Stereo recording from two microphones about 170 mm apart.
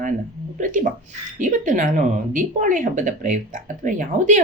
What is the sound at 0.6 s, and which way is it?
Speech, 50° right (ahead or behind).